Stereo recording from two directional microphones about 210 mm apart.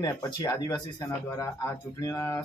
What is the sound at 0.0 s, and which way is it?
Speech, 15° left (ahead or behind).